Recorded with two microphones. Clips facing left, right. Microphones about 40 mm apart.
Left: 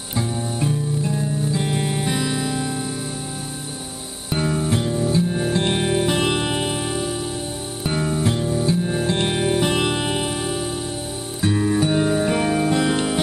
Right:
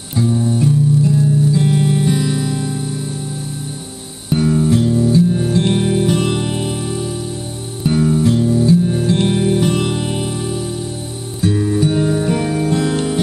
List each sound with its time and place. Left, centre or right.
0.1 s music: centre
4.3 s music: centre